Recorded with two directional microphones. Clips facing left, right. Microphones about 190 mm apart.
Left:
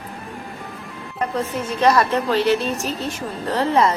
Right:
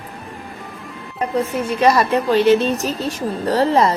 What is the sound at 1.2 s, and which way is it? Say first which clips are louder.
Speech: right 3 dB; 10° right (ahead or behind).